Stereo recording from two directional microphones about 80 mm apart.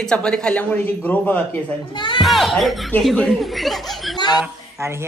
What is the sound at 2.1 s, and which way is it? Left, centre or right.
Speech, centre.